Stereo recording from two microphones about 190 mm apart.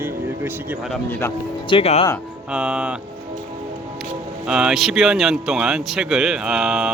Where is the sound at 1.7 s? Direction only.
30° left (ahead or behind).